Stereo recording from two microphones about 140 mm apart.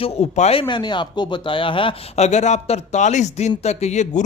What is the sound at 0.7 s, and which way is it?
A man's voice, 35° left (ahead or behind).